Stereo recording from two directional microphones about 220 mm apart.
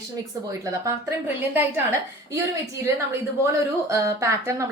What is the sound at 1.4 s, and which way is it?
A woman's voice, 10° right (ahead or behind).